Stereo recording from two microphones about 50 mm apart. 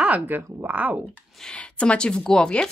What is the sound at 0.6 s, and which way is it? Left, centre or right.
Speech, right.